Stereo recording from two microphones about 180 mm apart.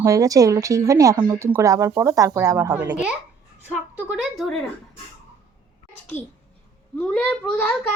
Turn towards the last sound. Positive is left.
turn(degrees=5)  # may be behind; listen again after turning